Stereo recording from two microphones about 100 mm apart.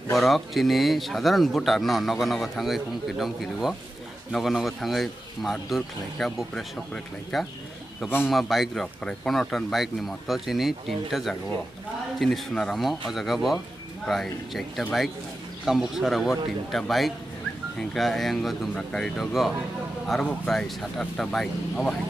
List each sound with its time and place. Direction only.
0.1 s speech: centre (ahead or behind)